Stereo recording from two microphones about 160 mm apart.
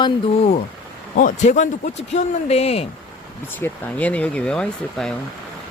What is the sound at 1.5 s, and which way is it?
A man's voice, 50° left (ahead or behind).